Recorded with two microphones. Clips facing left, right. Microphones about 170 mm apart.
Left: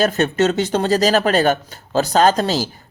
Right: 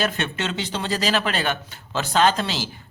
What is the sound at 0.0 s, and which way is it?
Speech, 40° left (ahead or behind).